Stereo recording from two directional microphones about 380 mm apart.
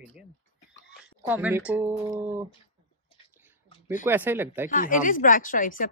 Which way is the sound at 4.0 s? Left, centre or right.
Centre.